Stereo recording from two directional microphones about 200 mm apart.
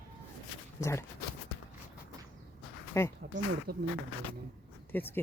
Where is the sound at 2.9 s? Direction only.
15° left (ahead or behind).